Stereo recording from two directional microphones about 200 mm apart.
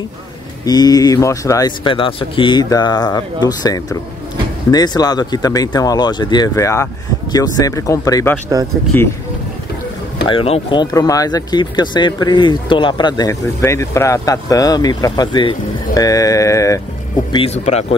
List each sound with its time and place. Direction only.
0.7 s speech: 20° left (ahead or behind)
10.2 s speech: 25° left (ahead or behind)
17.3 s speech: 30° left (ahead or behind)